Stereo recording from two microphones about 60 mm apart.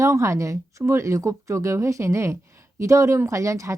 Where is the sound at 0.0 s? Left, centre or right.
Right.